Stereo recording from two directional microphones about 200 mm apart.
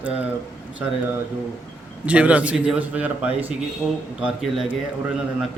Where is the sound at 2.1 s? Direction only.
5° right (ahead or behind).